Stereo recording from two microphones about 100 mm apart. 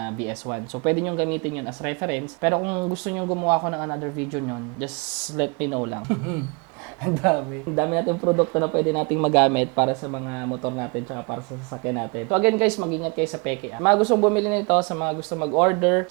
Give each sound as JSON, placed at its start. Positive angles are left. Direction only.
{"t": 0.0, "sound": "a sound", "side_deg": -10}
{"t": 0.4, "sound": "speech", "side_deg": -15}
{"t": 5.4, "sound": "speech", "side_deg": -10}
{"t": 6.1, "sound": "speech", "side_deg": -5}